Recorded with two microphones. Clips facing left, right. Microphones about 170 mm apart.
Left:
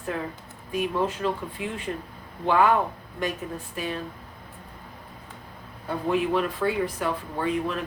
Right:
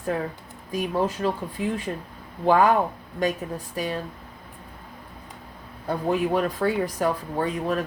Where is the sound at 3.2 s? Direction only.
40° right (ahead or behind).